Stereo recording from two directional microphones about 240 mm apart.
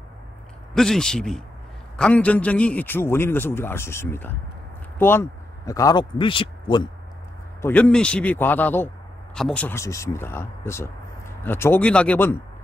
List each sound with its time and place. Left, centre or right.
0.7 s a man's voice: centre
7.6 s a man's voice: centre